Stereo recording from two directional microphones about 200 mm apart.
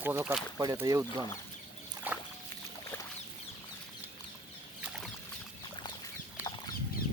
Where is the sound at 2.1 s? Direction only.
10° right (ahead or behind).